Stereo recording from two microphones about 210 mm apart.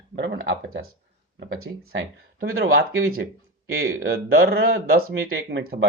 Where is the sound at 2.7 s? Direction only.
75° right (ahead or behind).